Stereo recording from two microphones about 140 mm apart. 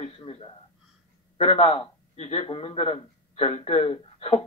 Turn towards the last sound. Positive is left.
turn(degrees=40)  # may be behind; listen again after turning